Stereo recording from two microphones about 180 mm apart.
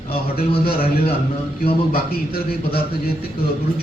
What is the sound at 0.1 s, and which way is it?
A man's voice, 55° left (ahead or behind).